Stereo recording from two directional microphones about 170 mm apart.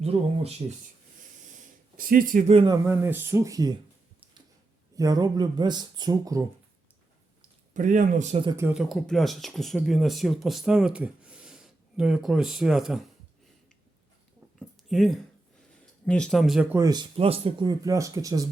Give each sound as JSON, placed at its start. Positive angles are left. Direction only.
{"t": 0.0, "sound": "speech", "side_deg": -35}
{"t": 2.0, "sound": "speech", "side_deg": -55}
{"t": 2.5, "sound": "speech", "side_deg": -35}
{"t": 2.7, "sound": "speech", "side_deg": -15}
{"t": 4.9, "sound": "speech", "side_deg": -20}
{"t": 7.7, "sound": "speech", "side_deg": -50}
{"t": 8.4, "sound": "speech", "side_deg": -15}
{"t": 8.7, "sound": "speech", "side_deg": 0}
{"t": 14.8, "sound": "speech", "side_deg": 0}
{"t": 16.7, "sound": "speech", "side_deg": -20}